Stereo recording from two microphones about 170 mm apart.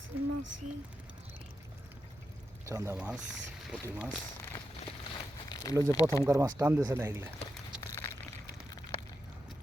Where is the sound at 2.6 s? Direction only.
15° right (ahead or behind).